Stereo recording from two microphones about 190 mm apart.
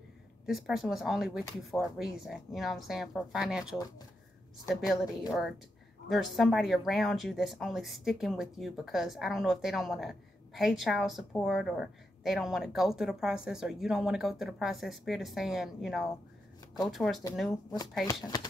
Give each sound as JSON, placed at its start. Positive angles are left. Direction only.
{"t": 0.5, "sound": "speech", "side_deg": 0}
{"t": 4.8, "sound": "speech", "side_deg": 0}
{"t": 18.2, "sound": "speech", "side_deg": 20}